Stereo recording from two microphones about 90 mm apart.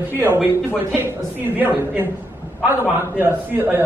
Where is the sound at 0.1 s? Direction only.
25° right (ahead or behind).